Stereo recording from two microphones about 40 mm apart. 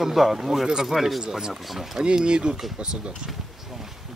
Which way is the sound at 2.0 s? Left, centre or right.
Right.